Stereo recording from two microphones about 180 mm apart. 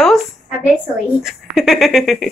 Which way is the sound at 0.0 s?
Centre (ahead or behind).